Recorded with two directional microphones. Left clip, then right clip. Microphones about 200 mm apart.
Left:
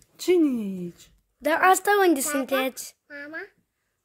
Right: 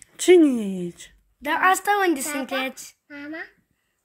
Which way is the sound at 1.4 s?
70° left (ahead or behind).